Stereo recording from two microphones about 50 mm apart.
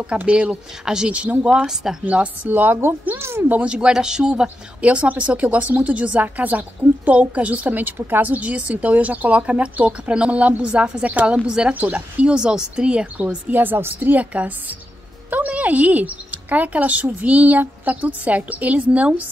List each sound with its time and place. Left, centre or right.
0.0 s a woman's voice: right
1.7 s speech: centre
2.4 s speech: right
3.2 s speech: right
3.6 s a woman's voice: centre
11.7 s speech: right
12.3 s a woman's voice: centre
13.6 s a woman's voice: right
14.1 s speech: right